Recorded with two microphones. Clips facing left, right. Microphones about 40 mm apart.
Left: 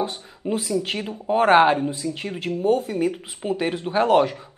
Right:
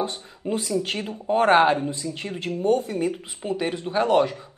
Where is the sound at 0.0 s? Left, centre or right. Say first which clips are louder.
Left 1 dB; centre.